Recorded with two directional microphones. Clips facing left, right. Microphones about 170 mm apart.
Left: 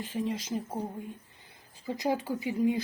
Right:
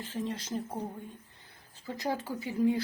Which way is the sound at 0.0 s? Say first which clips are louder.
Left 3 dB; 15° left (ahead or behind).